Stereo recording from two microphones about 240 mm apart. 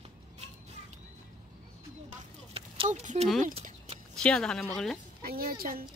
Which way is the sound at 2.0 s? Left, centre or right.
Right.